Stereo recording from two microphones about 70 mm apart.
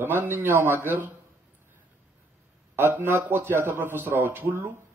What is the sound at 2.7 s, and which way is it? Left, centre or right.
A man's voice, right.